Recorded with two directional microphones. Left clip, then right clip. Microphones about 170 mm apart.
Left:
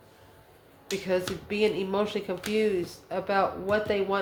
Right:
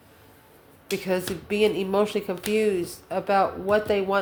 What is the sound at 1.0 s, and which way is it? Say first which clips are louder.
Speech: even; 40° right (ahead or behind).